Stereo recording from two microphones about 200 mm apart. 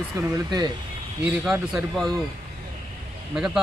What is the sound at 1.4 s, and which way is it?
Speech, centre (ahead or behind).